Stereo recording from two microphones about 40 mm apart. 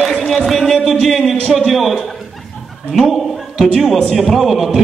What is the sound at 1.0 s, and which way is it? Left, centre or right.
Speech, centre.